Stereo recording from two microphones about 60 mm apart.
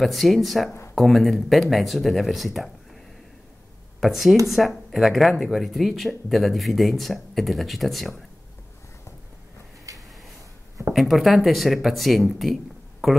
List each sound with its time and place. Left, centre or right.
0.0 s speech: centre
4.0 s speech: centre
9.9 s a sound: right
10.9 s speech: centre